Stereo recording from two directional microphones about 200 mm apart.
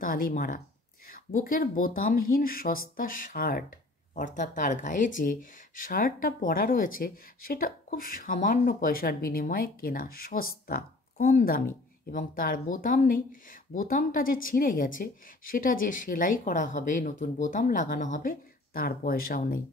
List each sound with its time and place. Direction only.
0.0 s speech: 45° left (ahead or behind)